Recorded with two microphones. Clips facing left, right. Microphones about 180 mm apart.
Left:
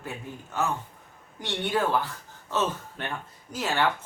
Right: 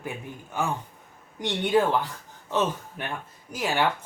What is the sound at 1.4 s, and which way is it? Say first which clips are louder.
Speech: right 4 dB; 15° right (ahead or behind).